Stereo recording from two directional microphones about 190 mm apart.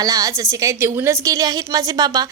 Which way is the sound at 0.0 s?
20° right (ahead or behind).